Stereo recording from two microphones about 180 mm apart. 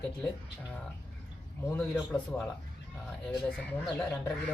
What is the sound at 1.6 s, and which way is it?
Speech, 10° left (ahead or behind).